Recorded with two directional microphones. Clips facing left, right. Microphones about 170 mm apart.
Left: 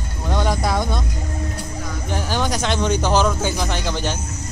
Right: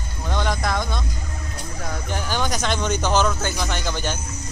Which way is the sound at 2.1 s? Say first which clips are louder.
Left 3 dB; centre (ahead or behind).